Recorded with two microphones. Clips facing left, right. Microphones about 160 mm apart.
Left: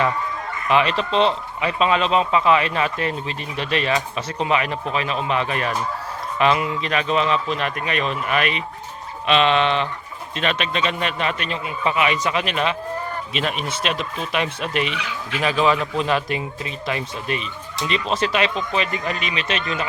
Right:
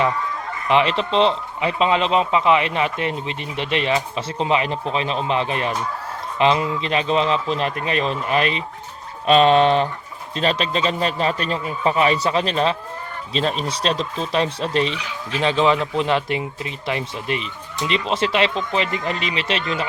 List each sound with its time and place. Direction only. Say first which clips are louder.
0.7 s speech: right 1 dB; 25° right (ahead or behind)